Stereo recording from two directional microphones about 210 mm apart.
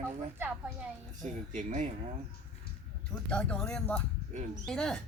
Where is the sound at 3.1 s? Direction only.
5° left (ahead or behind).